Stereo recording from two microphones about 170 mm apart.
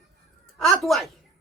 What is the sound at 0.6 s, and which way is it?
Speech, centre (ahead or behind).